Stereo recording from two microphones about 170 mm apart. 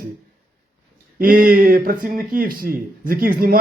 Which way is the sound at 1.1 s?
55° right (ahead or behind).